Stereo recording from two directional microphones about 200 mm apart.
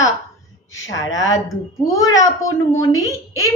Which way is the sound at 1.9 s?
15° left (ahead or behind).